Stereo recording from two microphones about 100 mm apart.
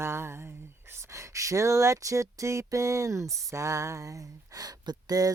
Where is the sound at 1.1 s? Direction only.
30° right (ahead or behind).